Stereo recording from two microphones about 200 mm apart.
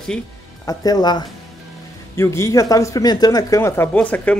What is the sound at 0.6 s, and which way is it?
Speech, 20° left (ahead or behind).